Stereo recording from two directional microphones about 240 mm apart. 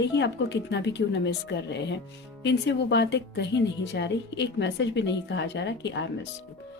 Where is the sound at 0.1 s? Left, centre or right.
Left.